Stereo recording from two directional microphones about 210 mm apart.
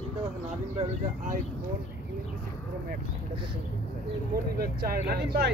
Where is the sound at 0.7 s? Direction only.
40° right (ahead or behind).